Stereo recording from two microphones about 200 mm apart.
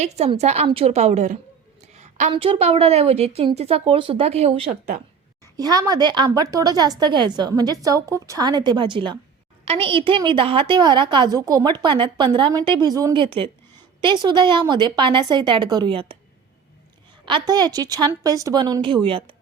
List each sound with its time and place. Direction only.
0.0 s a woman's voice: 35° right (ahead or behind)
1.9 s a sound: 35° right (ahead or behind)
2.3 s a woman's voice: 25° right (ahead or behind)
5.5 s a woman's voice: 20° right (ahead or behind)
17.2 s a woman's voice: 20° right (ahead or behind)